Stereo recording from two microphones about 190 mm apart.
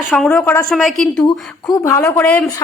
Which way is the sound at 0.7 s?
Centre (ahead or behind).